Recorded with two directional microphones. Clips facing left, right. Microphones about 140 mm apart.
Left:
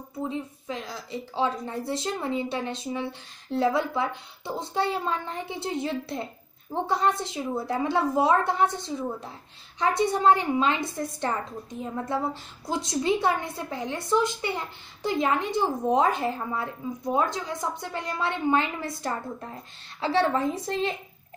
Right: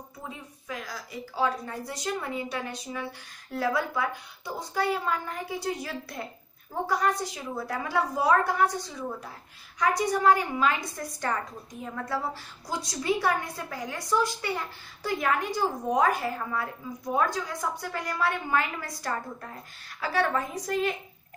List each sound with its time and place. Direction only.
0.2 s a woman's voice: 25° left (ahead or behind)